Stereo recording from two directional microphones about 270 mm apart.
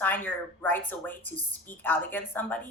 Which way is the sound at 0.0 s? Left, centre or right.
Centre.